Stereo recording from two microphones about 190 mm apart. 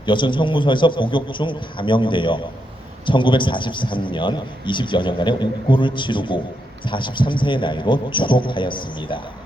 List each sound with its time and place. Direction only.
0.0 s a man's voice: 25° left (ahead or behind)